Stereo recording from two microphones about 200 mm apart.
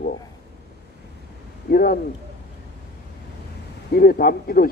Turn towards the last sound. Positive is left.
turn(degrees=45)  # may be behind; listen again after turning